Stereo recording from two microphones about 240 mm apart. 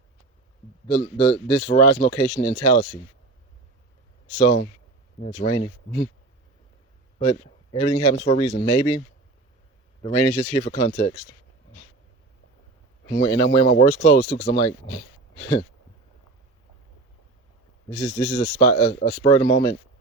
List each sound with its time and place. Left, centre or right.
0.9 s speech: left
5.2 s speech: left
7.2 s speech: left
10.0 s speech: left
13.1 s speech: centre
15.4 s speech: centre
17.8 s speech: left